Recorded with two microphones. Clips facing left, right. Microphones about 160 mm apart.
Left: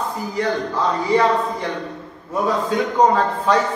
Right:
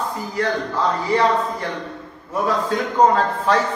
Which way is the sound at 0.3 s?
15° left (ahead or behind).